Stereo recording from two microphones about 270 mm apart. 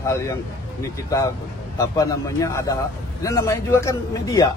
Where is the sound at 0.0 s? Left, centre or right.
Centre.